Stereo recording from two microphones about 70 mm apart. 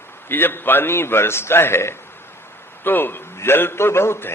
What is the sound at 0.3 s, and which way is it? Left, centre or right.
A man's voice, left.